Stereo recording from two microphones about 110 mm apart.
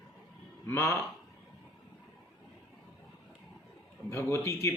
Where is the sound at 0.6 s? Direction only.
25° left (ahead or behind).